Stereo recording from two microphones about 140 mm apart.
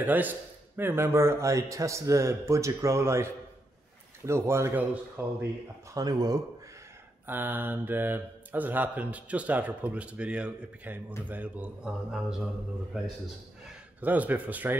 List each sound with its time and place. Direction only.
0.0 s speech: 10° right (ahead or behind)
4.3 s speech: 20° right (ahead or behind)
5.9 s speech: 25° right (ahead or behind)
7.2 s a man's voice: 15° right (ahead or behind)